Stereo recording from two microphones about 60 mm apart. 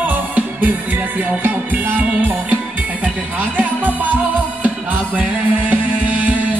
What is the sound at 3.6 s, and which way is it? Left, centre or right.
Music, right.